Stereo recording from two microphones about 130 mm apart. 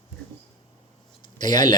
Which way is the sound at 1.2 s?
35° left (ahead or behind).